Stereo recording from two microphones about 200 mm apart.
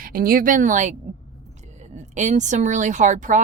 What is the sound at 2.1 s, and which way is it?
Speech, 35° right (ahead or behind).